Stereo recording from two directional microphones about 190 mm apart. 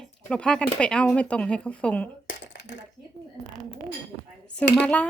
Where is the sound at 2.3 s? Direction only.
70° left (ahead or behind).